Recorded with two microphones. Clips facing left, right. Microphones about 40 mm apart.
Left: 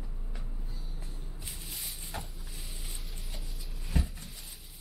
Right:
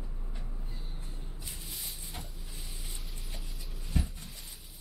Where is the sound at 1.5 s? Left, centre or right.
Centre.